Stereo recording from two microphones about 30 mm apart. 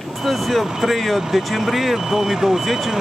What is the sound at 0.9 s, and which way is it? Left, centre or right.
Speech, centre.